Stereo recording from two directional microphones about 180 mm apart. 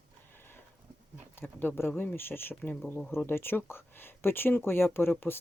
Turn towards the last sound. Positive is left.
turn(degrees=10)  # may be behind; listen again after turning